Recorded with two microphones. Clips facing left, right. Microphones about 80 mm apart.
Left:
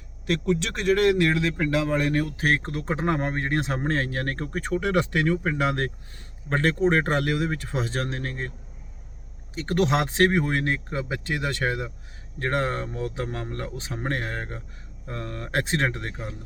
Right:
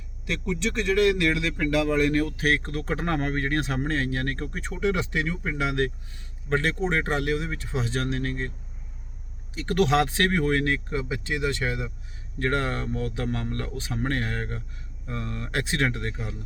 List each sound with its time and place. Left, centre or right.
0.3 s a man's voice: left
9.6 s a man's voice: left
12.4 s speech: left
15.0 s a man's voice: left